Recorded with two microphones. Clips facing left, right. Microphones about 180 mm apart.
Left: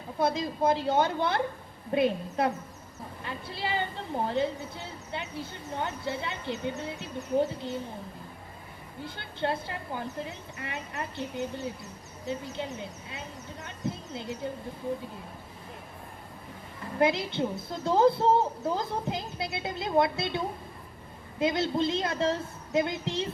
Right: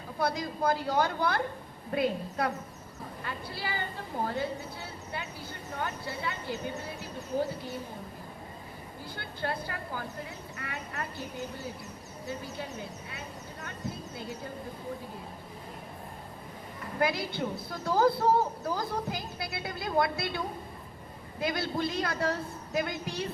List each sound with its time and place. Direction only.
0.2 s a woman's voice: 25° left (ahead or behind)
9.0 s a woman's voice: 25° left (ahead or behind)
17.0 s a woman's voice: 20° left (ahead or behind)